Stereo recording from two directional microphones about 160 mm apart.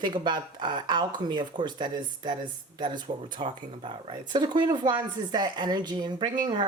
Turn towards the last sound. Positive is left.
turn(degrees=-25)  # may be behind; listen again after turning